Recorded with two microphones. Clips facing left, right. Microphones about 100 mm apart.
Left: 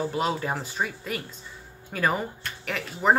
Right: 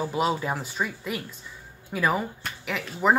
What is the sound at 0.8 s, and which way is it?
Speech, 15° left (ahead or behind).